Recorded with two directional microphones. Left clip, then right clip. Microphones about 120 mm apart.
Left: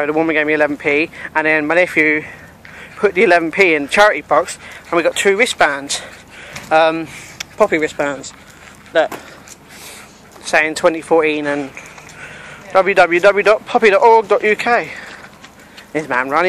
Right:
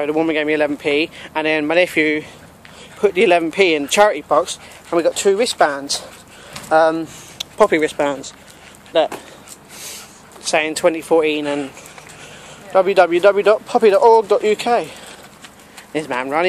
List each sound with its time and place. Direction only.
0.0 s speech: 15° right (ahead or behind)
3.0 s speech: 10° right (ahead or behind)
7.5 s speech: 20° right (ahead or behind)
10.6 s speech: 5° right (ahead or behind)
12.8 s speech: 20° right (ahead or behind)
15.9 s speech: 10° right (ahead or behind)